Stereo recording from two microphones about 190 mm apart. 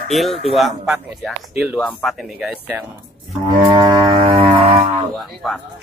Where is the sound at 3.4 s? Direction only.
25° right (ahead or behind).